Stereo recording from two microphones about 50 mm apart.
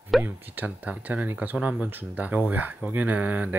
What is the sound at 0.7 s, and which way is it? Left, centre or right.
Speech, right.